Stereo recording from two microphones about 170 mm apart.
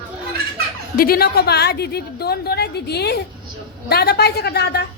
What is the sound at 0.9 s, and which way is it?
A woman's voice, 60° left (ahead or behind).